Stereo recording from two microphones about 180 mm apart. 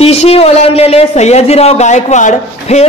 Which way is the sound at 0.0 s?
35° left (ahead or behind).